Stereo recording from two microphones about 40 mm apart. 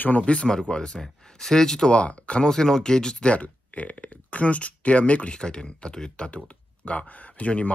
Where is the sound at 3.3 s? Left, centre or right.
Left.